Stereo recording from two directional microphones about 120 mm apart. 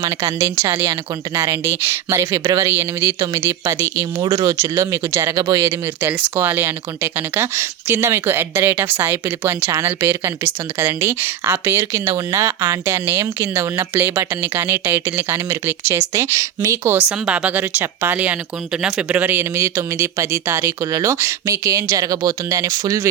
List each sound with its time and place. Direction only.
0.0 s speech: 25° right (ahead or behind)
6.0 s speech: 15° right (ahead or behind)
17.0 s speech: 10° right (ahead or behind); by 23.0 s 25° right (ahead or behind)